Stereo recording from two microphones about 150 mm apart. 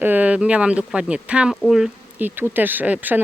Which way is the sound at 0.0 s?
10° right (ahead or behind).